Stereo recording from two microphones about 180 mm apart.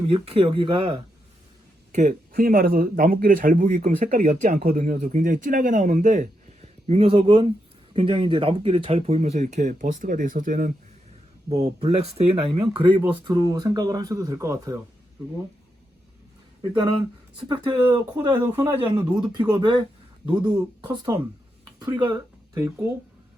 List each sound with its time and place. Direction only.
0.1 s speech: 30° right (ahead or behind)
1.9 s speech: 45° right (ahead or behind)
6.8 s speech: 35° right (ahead or behind); by 10.7 s 50° right (ahead or behind)
11.4 s speech: 35° right (ahead or behind); by 14.8 s 15° right (ahead or behind)
16.7 s speech: 25° right (ahead or behind)
22.1 s a sound: 15° right (ahead or behind)